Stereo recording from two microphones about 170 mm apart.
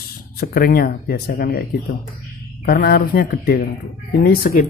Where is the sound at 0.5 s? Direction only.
60° left (ahead or behind).